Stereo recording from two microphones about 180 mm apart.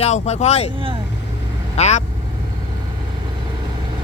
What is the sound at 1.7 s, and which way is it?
Speech, 40° left (ahead or behind).